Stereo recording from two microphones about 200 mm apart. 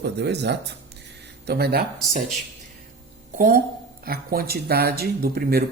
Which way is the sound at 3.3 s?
45° right (ahead or behind).